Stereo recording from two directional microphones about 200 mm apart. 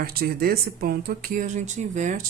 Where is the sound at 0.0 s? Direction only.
50° right (ahead or behind).